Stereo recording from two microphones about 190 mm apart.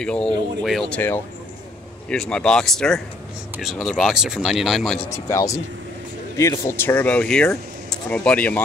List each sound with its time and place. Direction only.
0.0 s speech: 5° left (ahead or behind)
5.1 s speech: 15° left (ahead or behind)